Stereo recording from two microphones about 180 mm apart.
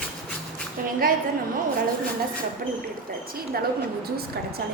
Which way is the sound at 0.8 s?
50° right (ahead or behind).